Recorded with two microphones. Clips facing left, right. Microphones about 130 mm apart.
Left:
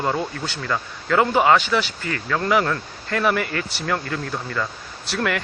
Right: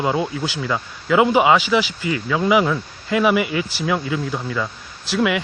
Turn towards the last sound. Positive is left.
turn(degrees=-5)  # may be behind; listen again after turning